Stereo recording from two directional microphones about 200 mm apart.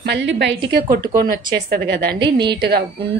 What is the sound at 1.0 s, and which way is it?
A woman's voice, 45° right (ahead or behind).